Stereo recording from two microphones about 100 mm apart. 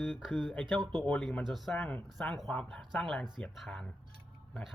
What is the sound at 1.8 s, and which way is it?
Speech, 15° left (ahead or behind).